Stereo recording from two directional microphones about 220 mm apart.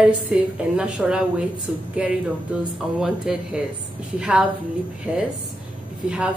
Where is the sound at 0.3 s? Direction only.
5° right (ahead or behind).